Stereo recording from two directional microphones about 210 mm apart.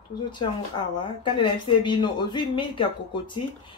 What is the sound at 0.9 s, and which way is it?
Speech, 20° left (ahead or behind).